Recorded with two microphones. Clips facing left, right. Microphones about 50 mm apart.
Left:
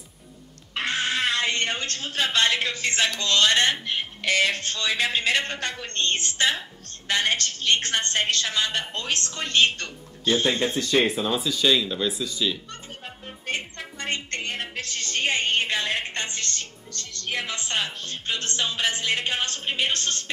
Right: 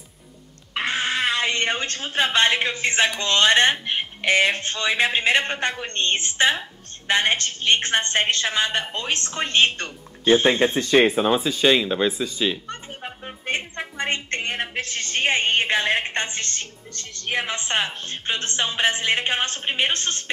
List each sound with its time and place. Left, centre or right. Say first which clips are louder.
0.7 s a woman's voice: right 2 dB; centre